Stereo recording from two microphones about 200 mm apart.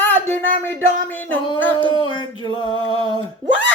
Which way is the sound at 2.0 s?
25° left (ahead or behind).